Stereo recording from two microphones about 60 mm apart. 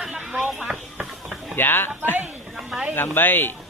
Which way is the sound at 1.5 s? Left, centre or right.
Left.